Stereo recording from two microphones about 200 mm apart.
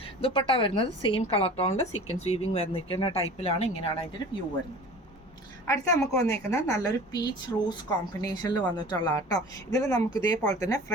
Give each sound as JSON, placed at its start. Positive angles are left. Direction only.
{"t": 0.2, "sound": "a woman's voice", "side_deg": 30}
{"t": 5.6, "sound": "a woman's voice", "side_deg": 15}